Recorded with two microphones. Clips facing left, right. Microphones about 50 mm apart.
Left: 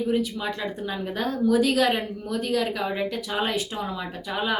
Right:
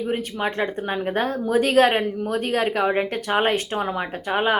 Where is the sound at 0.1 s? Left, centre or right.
Right.